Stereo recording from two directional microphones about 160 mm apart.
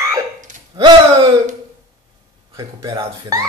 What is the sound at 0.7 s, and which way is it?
Speech, 30° right (ahead or behind).